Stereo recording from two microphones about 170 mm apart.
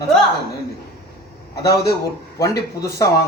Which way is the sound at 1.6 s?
20° left (ahead or behind).